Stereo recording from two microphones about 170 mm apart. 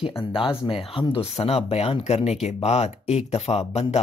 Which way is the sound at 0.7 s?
30° left (ahead or behind).